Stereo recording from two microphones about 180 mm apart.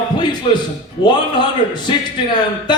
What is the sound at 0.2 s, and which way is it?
A man's voice, 25° left (ahead or behind).